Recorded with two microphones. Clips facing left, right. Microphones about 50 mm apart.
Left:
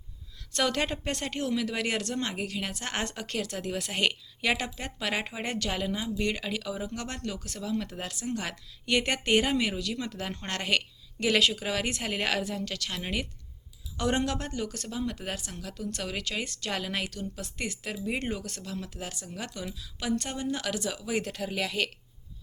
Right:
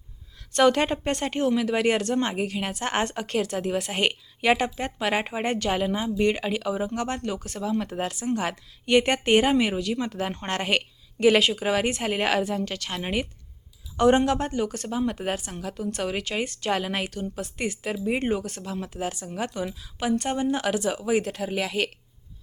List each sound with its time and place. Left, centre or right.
0.5 s speech: centre
21.1 s speech: centre